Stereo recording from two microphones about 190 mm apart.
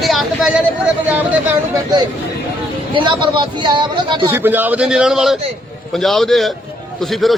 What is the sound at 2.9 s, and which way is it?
Speech, 25° right (ahead or behind).